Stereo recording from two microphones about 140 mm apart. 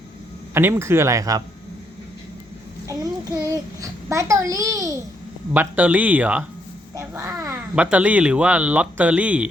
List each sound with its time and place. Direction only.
0.5 s speech: 20° right (ahead or behind)
2.8 s a child's voice: 25° right (ahead or behind)
5.5 s speech: 10° right (ahead or behind)